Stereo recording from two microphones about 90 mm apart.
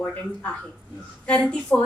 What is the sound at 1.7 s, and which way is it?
Speech, 15° left (ahead or behind).